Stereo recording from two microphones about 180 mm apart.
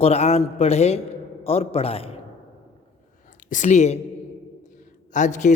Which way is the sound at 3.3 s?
45° left (ahead or behind).